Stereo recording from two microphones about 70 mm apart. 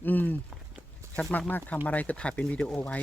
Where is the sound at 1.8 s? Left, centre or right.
Left.